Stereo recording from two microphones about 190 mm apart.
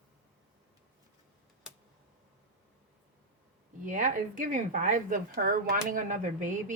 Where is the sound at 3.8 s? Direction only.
40° right (ahead or behind).